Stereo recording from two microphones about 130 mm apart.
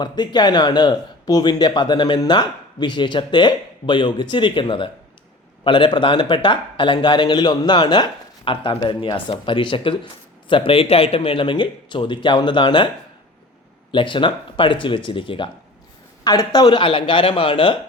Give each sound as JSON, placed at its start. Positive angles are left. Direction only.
{"t": 0.0, "sound": "speech", "side_deg": 35}
{"t": 13.9, "sound": "speech", "side_deg": 40}
{"t": 16.2, "sound": "speech", "side_deg": 30}